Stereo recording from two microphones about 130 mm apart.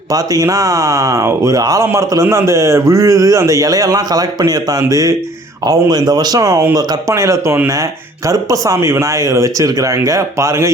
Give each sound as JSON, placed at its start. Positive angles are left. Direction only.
{"t": 0.1, "sound": "speech", "side_deg": -25}